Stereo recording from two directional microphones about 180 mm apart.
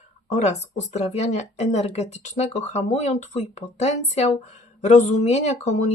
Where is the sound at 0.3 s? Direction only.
40° left (ahead or behind).